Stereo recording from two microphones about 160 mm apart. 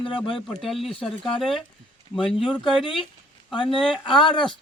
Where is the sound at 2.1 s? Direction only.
Centre (ahead or behind).